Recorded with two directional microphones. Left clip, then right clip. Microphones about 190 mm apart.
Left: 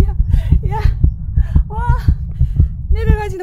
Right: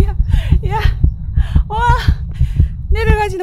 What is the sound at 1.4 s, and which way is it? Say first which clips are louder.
Heart sounds: right 8 dB; 30° right (ahead or behind).